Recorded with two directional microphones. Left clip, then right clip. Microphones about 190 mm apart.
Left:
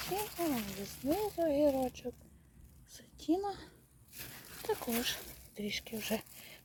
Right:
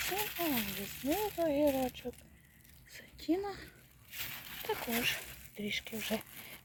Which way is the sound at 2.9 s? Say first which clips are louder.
Left 1 dB; 5° left (ahead or behind).